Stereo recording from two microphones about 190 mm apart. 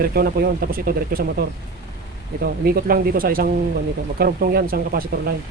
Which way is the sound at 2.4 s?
50° right (ahead or behind).